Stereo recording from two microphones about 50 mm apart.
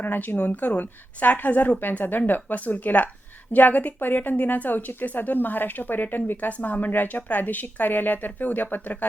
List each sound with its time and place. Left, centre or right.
0.0 s speech: left